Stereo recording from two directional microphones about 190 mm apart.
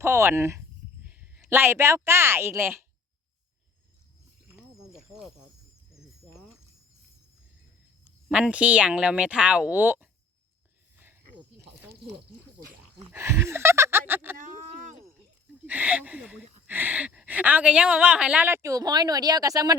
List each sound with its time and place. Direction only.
0.0 s speech: 15° right (ahead or behind)
4.9 s cricket: centre (ahead or behind)
8.3 s speech: 5° right (ahead or behind)
13.1 s a sound: 15° right (ahead or behind)
14.3 s a sound: 40° right (ahead or behind)
15.6 s speech: 10° right (ahead or behind)